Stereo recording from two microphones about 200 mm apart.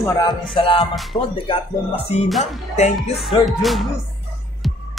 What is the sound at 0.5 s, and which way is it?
Speech, 25° left (ahead or behind).